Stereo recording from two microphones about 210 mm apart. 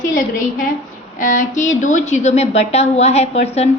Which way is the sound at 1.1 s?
40° left (ahead or behind).